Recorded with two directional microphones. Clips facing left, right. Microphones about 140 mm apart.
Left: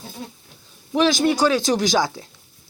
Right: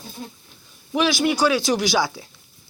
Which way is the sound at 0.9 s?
5° right (ahead or behind).